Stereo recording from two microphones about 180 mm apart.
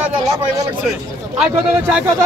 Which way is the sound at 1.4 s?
10° right (ahead or behind).